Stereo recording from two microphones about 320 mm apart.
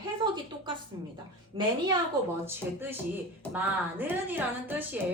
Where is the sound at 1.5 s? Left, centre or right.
Centre.